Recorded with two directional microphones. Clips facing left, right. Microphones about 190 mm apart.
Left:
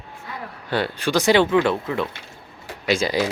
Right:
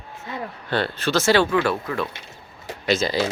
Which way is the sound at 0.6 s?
10° left (ahead or behind).